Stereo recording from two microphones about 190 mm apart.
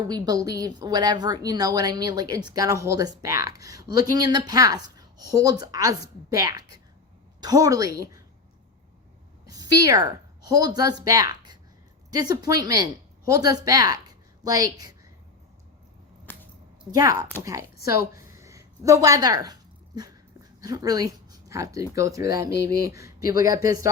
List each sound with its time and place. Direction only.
0.1 s a woman's voice: 20° right (ahead or behind)
9.5 s a woman's voice: 20° right (ahead or behind)
16.3 s a sound: 10° left (ahead or behind)
16.9 s a woman's voice: 20° right (ahead or behind)
20.6 s speech: 20° right (ahead or behind)